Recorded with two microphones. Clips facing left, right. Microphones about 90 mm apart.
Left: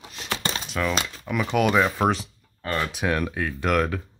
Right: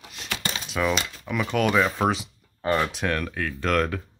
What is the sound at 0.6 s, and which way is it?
Crumpling, centre (ahead or behind).